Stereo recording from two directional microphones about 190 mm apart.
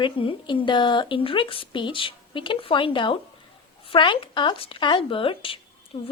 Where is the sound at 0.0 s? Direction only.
25° left (ahead or behind).